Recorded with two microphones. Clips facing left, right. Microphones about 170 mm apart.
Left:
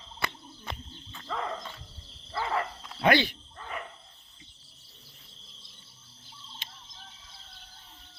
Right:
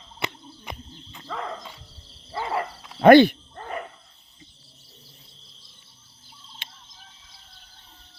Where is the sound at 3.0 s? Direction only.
50° right (ahead or behind).